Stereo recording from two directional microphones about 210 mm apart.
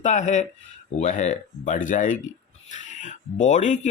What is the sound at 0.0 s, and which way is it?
Speech, 35° left (ahead or behind).